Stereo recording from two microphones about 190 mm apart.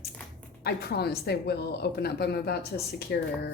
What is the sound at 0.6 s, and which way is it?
Speech, 60° left (ahead or behind).